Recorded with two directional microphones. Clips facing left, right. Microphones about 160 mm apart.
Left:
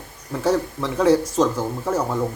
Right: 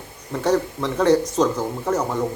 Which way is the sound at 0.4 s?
5° left (ahead or behind).